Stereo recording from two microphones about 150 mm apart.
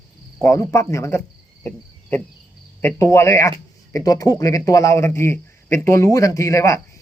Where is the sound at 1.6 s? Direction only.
10° left (ahead or behind).